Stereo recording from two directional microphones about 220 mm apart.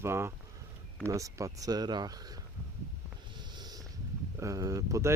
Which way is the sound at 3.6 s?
20° right (ahead or behind).